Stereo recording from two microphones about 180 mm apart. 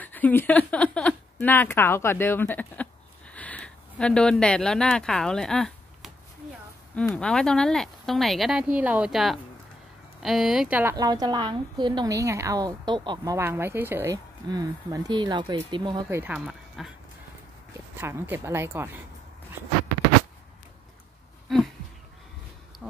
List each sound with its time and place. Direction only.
0.0 s speech: 10° left (ahead or behind); by 11.0 s 10° right (ahead or behind)
11.0 s a woman's voice: 20° right (ahead or behind)
16.1 s speech: 15° right (ahead or behind)
16.3 s speech: centre (ahead or behind)
17.9 s speech: 10° right (ahead or behind)